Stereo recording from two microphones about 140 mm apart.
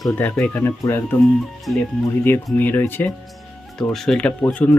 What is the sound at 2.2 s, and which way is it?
Speech, 15° left (ahead or behind).